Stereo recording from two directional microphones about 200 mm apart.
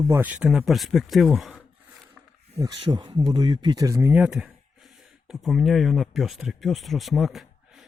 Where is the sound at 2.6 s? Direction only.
20° right (ahead or behind).